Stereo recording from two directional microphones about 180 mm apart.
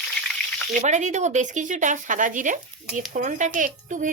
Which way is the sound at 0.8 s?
40° right (ahead or behind).